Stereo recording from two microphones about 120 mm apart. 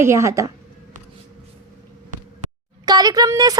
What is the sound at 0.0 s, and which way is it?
Speech, 25° right (ahead or behind).